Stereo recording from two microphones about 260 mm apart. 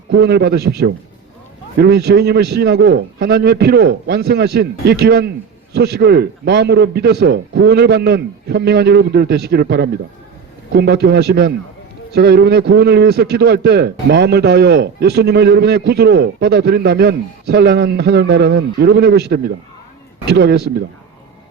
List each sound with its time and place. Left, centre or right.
0.1 s a man's voice: right